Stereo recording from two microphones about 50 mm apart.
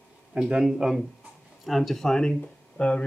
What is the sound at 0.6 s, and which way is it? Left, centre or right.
Speech, centre.